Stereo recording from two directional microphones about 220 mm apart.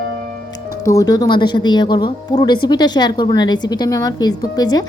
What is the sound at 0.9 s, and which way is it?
A woman's voice, 15° left (ahead or behind).